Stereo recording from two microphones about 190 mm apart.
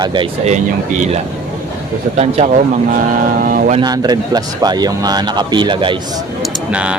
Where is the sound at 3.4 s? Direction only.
45° right (ahead or behind).